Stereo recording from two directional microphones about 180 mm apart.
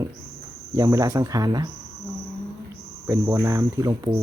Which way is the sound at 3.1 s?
15° right (ahead or behind).